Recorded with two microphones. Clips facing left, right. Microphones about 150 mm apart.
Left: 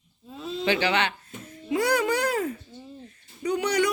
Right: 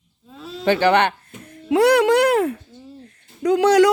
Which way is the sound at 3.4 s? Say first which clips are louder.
Right 10 dB; 85° right.